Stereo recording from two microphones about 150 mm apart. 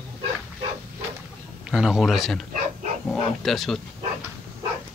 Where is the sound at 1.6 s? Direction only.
5° right (ahead or behind).